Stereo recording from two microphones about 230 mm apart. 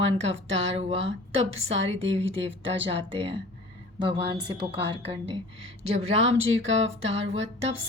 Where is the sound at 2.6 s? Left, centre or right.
Right.